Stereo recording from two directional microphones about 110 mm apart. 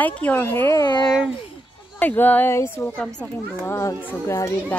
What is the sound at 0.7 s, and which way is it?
Speech, 40° left (ahead or behind).